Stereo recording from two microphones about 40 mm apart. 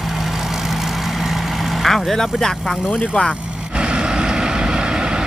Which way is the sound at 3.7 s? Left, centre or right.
Right.